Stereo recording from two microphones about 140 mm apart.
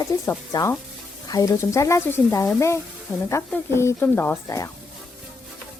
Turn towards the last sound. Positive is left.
turn(degrees=15)  # may be behind; listen again after turning